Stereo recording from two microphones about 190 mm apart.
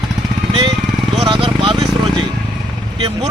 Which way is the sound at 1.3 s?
25° right (ahead or behind).